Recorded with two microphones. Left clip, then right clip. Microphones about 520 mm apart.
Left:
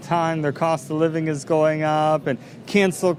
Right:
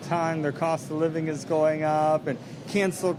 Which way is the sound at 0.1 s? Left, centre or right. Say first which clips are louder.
Left 5 dB; left.